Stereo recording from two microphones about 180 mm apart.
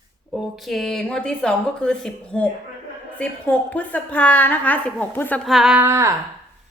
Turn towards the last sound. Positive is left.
turn(degrees=-15)  # may be behind; listen again after turning